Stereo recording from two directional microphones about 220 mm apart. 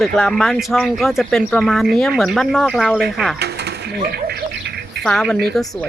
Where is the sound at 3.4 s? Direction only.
50° right (ahead or behind).